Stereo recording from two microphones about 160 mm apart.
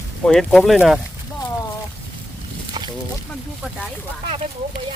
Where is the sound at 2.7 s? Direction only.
30° right (ahead or behind).